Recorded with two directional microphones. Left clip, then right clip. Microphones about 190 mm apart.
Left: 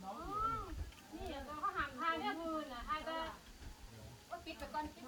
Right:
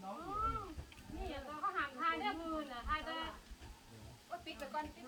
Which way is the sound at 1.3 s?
45° right (ahead or behind).